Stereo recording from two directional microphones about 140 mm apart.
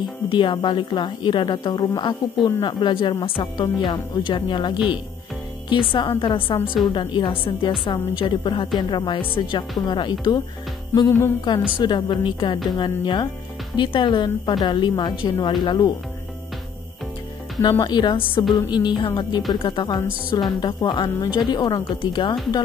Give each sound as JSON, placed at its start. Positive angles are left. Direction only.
{"t": 0.0, "sound": "a woman's voice", "side_deg": 35}
{"t": 11.0, "sound": "music", "side_deg": 20}
{"t": 11.8, "sound": "a woman's voice", "side_deg": 35}
{"t": 17.6, "sound": "a woman's voice", "side_deg": 30}